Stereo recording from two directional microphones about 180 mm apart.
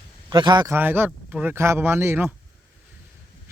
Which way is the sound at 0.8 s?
10° right (ahead or behind).